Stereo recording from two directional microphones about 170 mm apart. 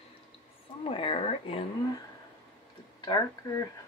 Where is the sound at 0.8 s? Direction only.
30° left (ahead or behind).